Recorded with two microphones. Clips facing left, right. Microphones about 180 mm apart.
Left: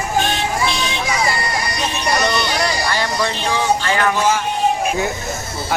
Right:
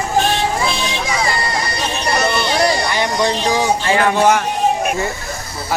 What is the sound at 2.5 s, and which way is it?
Vehicle, 20° right (ahead or behind).